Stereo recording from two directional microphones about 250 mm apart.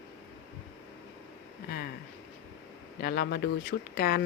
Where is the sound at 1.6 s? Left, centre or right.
Left.